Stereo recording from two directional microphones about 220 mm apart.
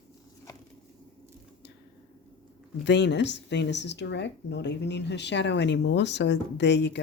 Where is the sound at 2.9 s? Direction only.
50° left (ahead or behind).